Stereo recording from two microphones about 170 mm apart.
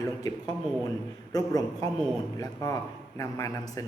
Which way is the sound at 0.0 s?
20° left (ahead or behind).